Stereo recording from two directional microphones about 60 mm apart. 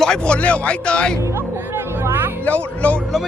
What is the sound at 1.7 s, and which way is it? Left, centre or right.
Music, right.